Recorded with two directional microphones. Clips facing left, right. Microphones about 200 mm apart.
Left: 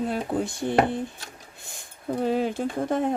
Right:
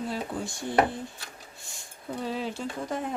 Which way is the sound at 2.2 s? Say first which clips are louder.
Left 8 dB; 50° left (ahead or behind).